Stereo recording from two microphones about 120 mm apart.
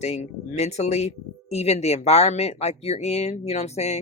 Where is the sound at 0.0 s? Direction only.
70° left (ahead or behind).